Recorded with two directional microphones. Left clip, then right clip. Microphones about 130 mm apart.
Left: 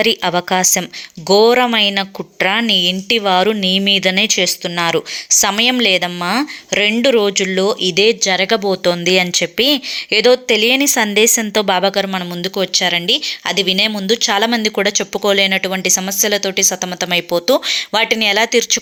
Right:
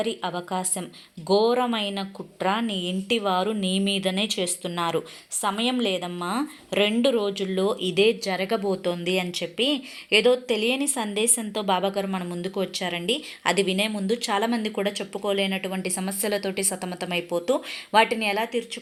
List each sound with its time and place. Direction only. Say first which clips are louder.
0.2 s a woman's voice: left 14 dB; 45° left (ahead or behind); by 5.0 s 25° left (ahead or behind)
5.4 s a woman's voice: left 10 dB; 40° left (ahead or behind)